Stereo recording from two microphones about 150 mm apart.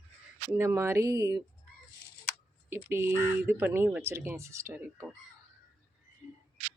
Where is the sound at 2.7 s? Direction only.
15° right (ahead or behind).